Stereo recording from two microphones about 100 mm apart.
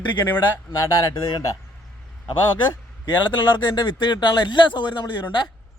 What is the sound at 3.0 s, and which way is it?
Speech, 45° left (ahead or behind).